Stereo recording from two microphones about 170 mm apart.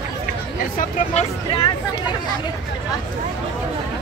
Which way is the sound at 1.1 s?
30° left (ahead or behind).